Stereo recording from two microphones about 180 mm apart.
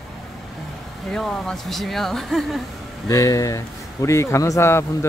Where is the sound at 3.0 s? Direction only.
15° left (ahead or behind).